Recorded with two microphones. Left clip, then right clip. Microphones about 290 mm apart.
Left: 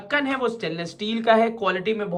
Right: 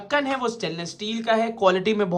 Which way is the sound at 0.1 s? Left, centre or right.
Centre.